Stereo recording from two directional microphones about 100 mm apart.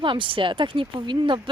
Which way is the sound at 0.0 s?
55° right (ahead or behind).